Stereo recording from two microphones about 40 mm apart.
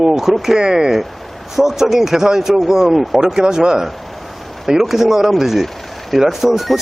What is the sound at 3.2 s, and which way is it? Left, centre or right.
Speech, centre.